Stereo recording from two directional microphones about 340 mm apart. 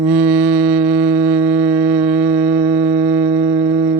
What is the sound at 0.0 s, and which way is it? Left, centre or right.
Mantra, centre.